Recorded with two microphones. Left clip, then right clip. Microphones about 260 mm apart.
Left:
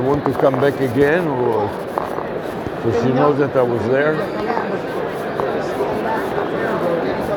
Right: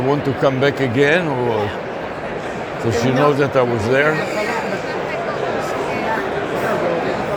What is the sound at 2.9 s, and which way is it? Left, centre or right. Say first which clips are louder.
Speech: even; right.